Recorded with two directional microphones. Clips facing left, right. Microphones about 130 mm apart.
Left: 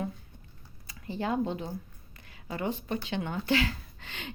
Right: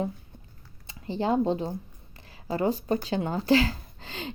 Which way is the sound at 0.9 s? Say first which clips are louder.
Right 5 dB; 30° right (ahead or behind).